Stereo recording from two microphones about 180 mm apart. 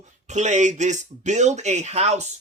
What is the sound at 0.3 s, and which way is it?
Speech, 40° right (ahead or behind).